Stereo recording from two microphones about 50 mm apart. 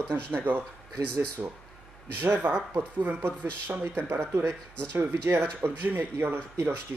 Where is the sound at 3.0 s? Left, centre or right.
Right.